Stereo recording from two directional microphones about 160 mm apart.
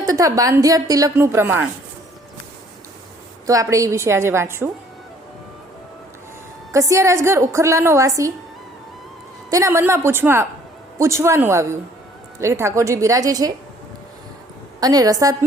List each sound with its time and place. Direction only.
0.0 s a woman's voice: 20° right (ahead or behind)
3.4 s a woman's voice: 20° right (ahead or behind)
6.7 s a woman's voice: 20° right (ahead or behind)
9.5 s a woman's voice: 20° right (ahead or behind)
14.8 s a woman's voice: 25° right (ahead or behind)